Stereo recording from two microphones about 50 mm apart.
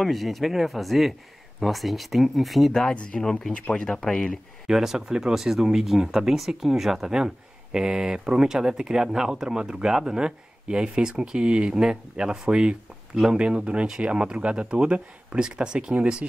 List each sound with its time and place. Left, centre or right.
0.0 s speech: centre
2.8 s speech: centre
4.6 s speech: centre
13.4 s speech: right